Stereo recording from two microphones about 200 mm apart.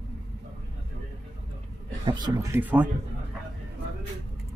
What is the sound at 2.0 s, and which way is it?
Speech, 20° right (ahead or behind).